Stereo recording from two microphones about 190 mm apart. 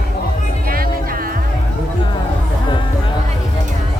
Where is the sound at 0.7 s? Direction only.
50° right (ahead or behind).